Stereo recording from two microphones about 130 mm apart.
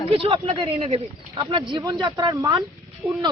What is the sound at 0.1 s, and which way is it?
Speech, 45° right (ahead or behind).